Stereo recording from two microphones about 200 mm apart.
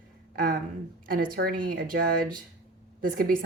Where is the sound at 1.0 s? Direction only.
45° right (ahead or behind).